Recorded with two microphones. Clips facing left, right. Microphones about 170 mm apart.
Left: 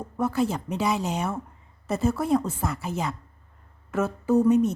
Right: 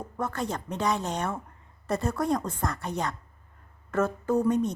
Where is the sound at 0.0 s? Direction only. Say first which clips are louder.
Left 7 dB; 10° left (ahead or behind).